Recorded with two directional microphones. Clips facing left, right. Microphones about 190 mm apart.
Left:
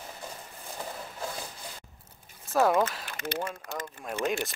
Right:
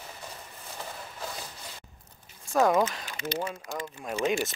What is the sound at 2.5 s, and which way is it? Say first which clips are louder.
Speech: right 1 dB; centre (ahead or behind).